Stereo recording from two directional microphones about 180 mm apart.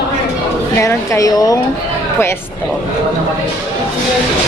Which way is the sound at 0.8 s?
15° left (ahead or behind).